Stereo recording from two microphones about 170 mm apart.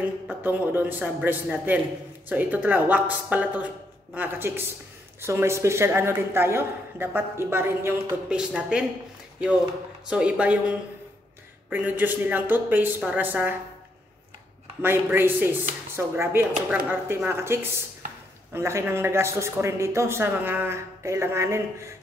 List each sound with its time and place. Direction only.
0.3 s a man's voice: 10° right (ahead or behind)
10.0 s a man's voice: 5° right (ahead or behind)
11.7 s a man's voice: 10° right (ahead or behind)
14.8 s a man's voice: 10° right (ahead or behind)